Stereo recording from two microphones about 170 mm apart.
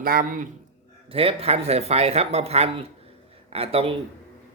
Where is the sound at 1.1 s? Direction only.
35° right (ahead or behind).